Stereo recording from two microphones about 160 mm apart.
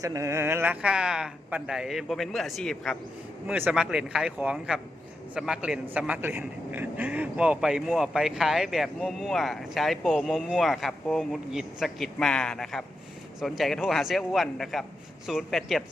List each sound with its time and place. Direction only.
0.0 s a man's voice: 20° right (ahead or behind); by 15.8 s centre (ahead or behind)